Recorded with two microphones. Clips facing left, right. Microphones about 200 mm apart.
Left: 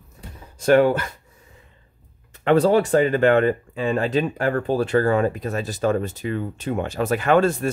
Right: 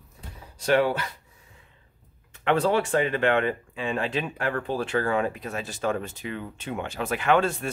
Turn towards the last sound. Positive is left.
turn(degrees=40)  # may be behind; listen again after turning